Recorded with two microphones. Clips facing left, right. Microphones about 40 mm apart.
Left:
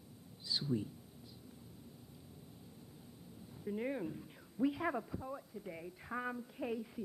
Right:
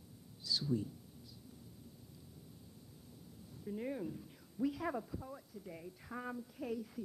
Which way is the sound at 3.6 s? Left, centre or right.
Left.